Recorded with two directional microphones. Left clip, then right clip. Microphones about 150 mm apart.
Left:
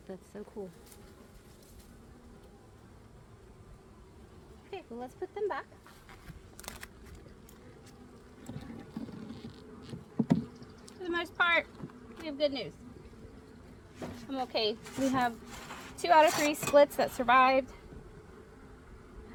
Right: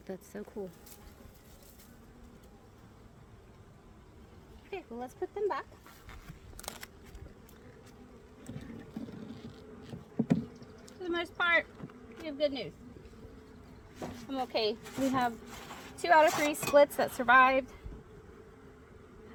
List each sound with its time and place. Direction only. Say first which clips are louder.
4.7 s speech: right 1 dB; 50° right (ahead or behind)
6.6 s a sound: right 1 dB; 15° right (ahead or behind)
8.4 s bee: left 1 dB; 15° left (ahead or behind)
11.0 s a woman's voice: left 2 dB; 10° right (ahead or behind)
14.0 s speech: even; 30° right (ahead or behind)